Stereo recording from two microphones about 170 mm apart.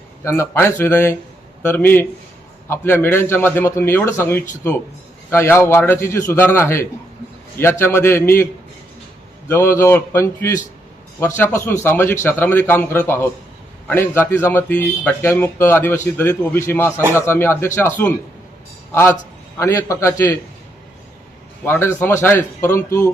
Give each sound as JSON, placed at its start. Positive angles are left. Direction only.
{"t": 0.3, "sound": "speech", "side_deg": 15}
{"t": 9.5, "sound": "a man's voice", "side_deg": 15}
{"t": 21.6, "sound": "speech", "side_deg": 10}